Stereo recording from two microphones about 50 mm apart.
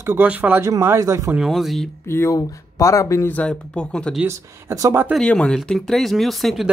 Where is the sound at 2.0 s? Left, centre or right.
Left.